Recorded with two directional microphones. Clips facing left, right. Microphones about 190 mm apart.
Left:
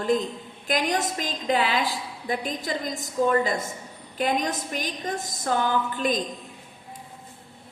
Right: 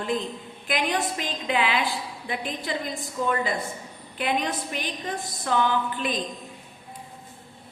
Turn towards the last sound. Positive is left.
turn(degrees=45)  # may be behind; listen again after turning